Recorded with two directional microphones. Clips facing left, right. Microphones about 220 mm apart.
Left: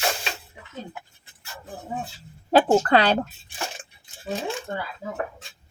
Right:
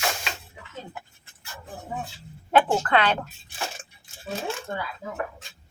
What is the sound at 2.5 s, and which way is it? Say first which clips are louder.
Speech: left 4 dB; 35° left (ahead or behind).